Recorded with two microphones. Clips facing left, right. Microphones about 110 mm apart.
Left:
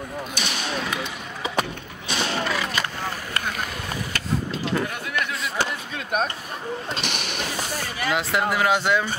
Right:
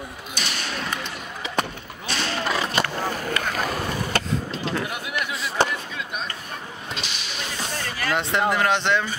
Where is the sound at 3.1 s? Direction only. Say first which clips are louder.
Right 5 dB; 50° right (ahead or behind).